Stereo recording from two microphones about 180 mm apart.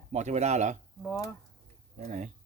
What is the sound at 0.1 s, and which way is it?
Speech, 40° right (ahead or behind).